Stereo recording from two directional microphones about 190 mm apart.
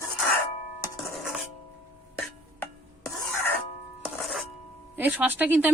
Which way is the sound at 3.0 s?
10° left (ahead or behind).